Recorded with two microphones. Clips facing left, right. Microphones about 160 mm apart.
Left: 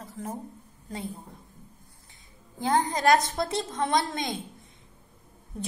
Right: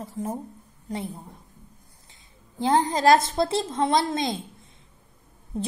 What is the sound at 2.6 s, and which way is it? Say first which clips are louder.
A woman's voice: right 4 dB; 25° right (ahead or behind).